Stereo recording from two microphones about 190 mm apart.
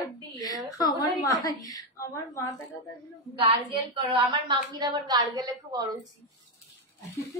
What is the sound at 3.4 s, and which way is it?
A woman's voice, 30° right (ahead or behind).